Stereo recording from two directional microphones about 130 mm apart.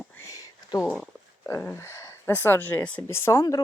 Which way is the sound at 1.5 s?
20° left (ahead or behind).